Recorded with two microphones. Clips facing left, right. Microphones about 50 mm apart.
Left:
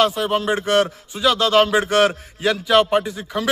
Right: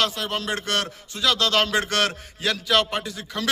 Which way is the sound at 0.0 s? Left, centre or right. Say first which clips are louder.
Left 7 dB; centre.